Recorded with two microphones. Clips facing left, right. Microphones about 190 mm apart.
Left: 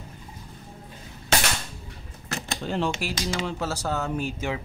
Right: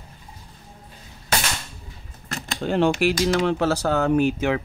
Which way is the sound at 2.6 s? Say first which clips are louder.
Right 9 dB; 60° right (ahead or behind).